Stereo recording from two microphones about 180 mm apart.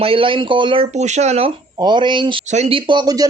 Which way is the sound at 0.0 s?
30° right (ahead or behind).